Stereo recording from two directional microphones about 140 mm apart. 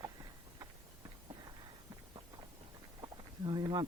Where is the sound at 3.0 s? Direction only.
30° right (ahead or behind).